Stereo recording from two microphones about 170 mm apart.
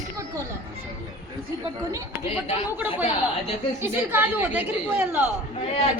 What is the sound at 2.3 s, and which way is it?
Speech, 35° left (ahead or behind).